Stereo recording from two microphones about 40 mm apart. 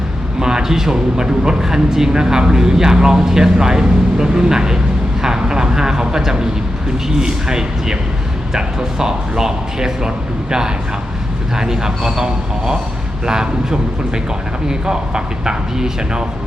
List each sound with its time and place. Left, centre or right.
0.3 s speech: centre
11.5 s speech: centre